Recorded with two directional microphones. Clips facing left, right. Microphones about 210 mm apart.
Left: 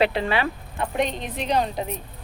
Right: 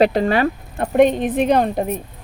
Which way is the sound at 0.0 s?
45° right (ahead or behind).